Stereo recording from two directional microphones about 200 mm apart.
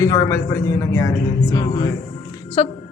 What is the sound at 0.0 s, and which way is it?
A man's voice, 15° left (ahead or behind).